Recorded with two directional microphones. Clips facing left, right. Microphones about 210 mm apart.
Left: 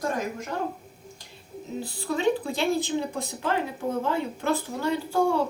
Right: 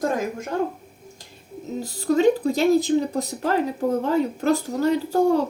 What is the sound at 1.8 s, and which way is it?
Speech, 40° right (ahead or behind).